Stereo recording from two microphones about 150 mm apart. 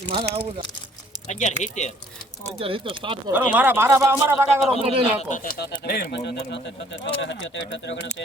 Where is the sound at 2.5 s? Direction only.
35° right (ahead or behind).